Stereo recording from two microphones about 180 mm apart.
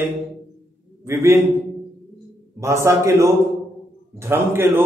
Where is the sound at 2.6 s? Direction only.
15° right (ahead or behind).